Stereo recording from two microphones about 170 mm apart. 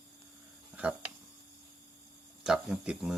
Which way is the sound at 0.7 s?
10° right (ahead or behind).